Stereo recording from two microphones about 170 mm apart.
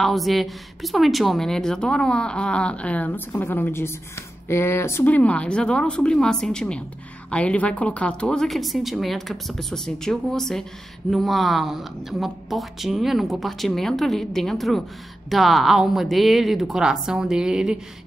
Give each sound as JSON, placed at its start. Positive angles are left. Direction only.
{"t": 0.0, "sound": "speech", "side_deg": 0}